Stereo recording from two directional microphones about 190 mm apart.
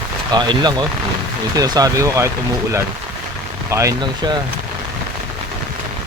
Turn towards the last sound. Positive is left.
turn(degrees=-20)  # may be behind; listen again after turning